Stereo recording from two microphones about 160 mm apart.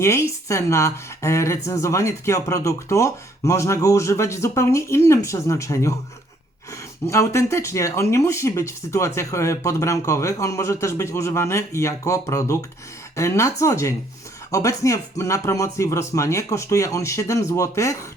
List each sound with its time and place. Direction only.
0.0 s speech: 15° left (ahead or behind)
7.1 s speech: 15° left (ahead or behind)